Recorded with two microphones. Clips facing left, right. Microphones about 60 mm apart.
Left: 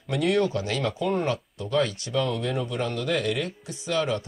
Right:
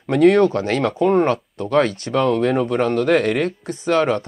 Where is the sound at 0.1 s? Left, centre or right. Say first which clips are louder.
Right 10 dB; right.